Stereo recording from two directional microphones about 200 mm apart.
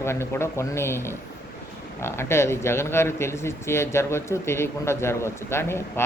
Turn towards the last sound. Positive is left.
turn(degrees=10)  # may be behind; listen again after turning